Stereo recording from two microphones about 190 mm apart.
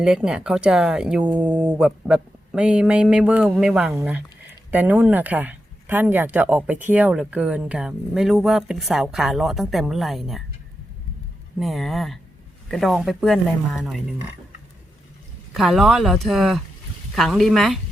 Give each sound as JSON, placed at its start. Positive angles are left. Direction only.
{"t": 0.0, "sound": "speech", "side_deg": -5}
{"t": 11.6, "sound": "speech", "side_deg": 0}
{"t": 15.5, "sound": "speech", "side_deg": 0}